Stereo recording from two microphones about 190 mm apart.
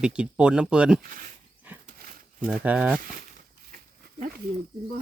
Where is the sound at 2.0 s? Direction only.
45° right (ahead or behind).